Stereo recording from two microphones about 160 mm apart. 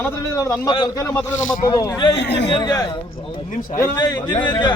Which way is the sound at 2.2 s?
90° left.